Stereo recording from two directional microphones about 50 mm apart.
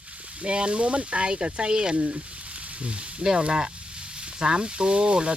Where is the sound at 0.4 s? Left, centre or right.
Right.